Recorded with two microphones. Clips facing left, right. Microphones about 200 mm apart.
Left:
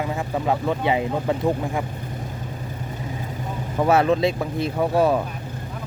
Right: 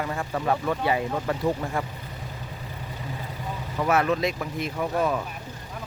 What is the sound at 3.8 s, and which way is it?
Speech, 30° left (ahead or behind).